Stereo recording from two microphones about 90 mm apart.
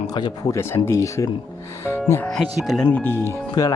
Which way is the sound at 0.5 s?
30° left (ahead or behind).